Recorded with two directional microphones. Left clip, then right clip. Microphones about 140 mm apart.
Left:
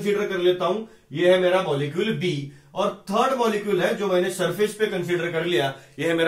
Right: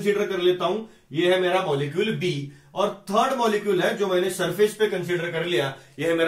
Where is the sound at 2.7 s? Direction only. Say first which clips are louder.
Right 1 dB; 10° left (ahead or behind).